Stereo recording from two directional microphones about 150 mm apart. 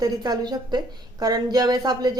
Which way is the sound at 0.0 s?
25° right (ahead or behind).